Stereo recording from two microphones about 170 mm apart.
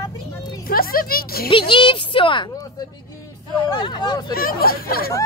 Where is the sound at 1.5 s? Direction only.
30° left (ahead or behind).